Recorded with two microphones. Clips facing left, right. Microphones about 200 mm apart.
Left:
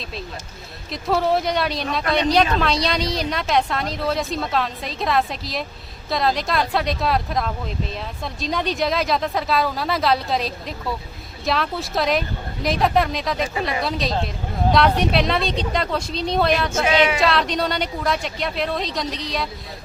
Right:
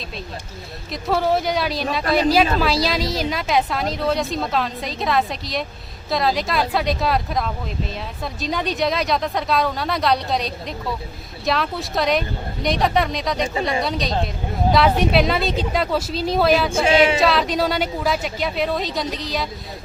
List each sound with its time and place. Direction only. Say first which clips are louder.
0.9 s a woman's voice: even; centre (ahead or behind)
16.7 s speech: right 3 dB; 30° right (ahead or behind)
17.2 s a woman's voice: right 2 dB; centre (ahead or behind)